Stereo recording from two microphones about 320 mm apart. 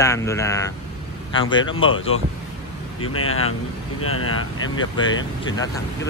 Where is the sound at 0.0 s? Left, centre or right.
Centre.